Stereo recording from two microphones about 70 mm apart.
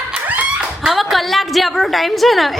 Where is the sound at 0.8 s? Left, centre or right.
Centre.